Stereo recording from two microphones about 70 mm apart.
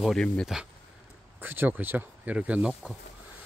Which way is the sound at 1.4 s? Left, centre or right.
Right.